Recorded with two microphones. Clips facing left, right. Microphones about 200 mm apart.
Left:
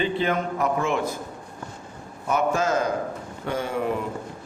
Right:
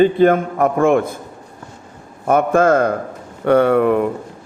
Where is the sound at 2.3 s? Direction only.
55° right (ahead or behind).